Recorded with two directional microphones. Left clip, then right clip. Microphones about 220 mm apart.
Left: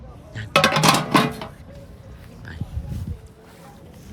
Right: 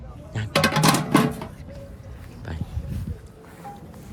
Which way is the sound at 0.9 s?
15° left (ahead or behind).